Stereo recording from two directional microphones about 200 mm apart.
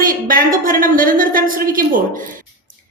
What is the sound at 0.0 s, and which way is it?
A woman's voice, 45° right (ahead or behind).